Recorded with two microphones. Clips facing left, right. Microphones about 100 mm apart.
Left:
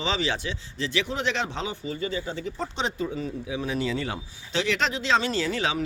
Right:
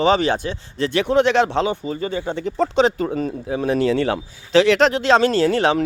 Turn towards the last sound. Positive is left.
turn(degrees=-60)  # may be behind; listen again after turning